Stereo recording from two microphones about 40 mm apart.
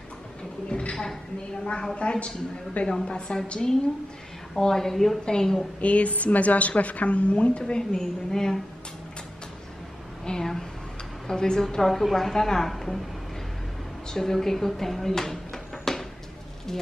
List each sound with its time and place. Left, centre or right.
0.7 s a sound: left
1.6 s a woman's voice: left
5.8 s a woman's voice: left; by 8.5 s centre
10.2 s a woman's voice: centre
14.0 s a woman's voice: centre